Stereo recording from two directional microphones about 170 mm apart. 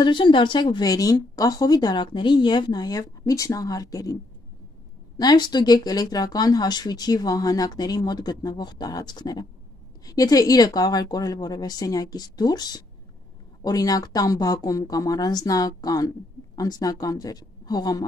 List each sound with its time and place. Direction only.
0.0 s speech: 30° left (ahead or behind)